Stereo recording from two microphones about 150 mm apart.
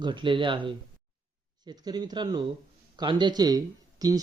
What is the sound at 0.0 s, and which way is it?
Speech, 30° right (ahead or behind).